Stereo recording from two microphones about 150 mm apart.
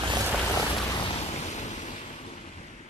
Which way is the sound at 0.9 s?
35° left (ahead or behind).